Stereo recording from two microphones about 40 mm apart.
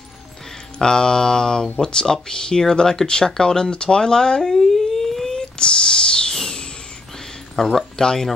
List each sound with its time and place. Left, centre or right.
0.7 s speech: centre
6.3 s a sound: centre
7.5 s speech: centre